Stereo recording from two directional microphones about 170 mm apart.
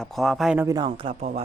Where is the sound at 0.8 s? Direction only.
30° right (ahead or behind).